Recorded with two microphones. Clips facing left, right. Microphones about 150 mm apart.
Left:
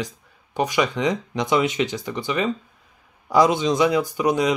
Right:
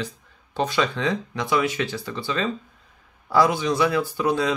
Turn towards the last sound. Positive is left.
turn(degrees=15)  # may be behind; listen again after turning